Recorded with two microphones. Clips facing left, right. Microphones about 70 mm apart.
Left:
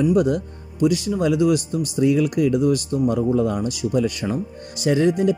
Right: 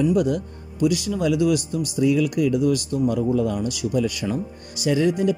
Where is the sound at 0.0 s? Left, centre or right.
Left.